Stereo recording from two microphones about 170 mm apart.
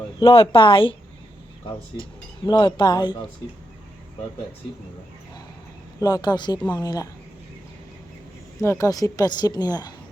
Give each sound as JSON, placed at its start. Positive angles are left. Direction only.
{"t": 0.2, "sound": "a woman's voice", "side_deg": 30}
{"t": 2.0, "sound": "a woman's voice", "side_deg": 30}
{"t": 6.0, "sound": "a woman's voice", "side_deg": 20}
{"t": 8.6, "sound": "a woman's voice", "side_deg": 15}